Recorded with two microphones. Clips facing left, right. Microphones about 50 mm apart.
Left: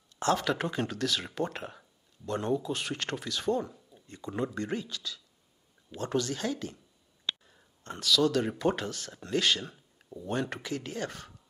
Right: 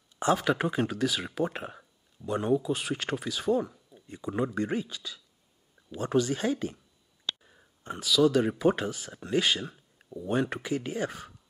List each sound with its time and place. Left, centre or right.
0.2 s speech: centre